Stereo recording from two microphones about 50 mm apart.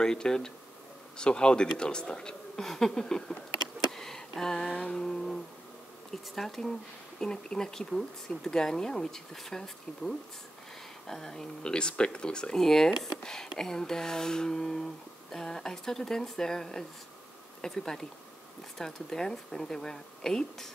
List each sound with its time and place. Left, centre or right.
0.0 s speech: centre
3.9 s a sound: centre
4.7 s music: centre
6.3 s speech: centre